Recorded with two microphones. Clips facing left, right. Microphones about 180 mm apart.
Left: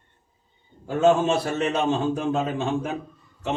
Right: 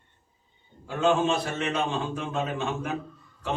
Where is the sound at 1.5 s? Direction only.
40° left (ahead or behind).